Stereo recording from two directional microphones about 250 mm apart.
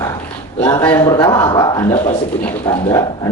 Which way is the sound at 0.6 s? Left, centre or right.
Centre.